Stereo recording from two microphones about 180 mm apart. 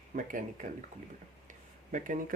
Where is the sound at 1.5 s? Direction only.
45° right (ahead or behind).